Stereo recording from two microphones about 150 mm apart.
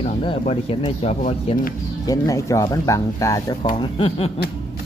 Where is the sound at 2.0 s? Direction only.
20° left (ahead or behind).